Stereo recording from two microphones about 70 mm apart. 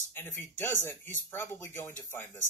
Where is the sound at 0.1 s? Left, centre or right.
Left.